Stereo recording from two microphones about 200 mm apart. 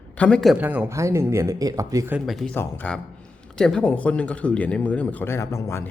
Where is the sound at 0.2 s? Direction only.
5° left (ahead or behind); by 2.1 s 15° right (ahead or behind).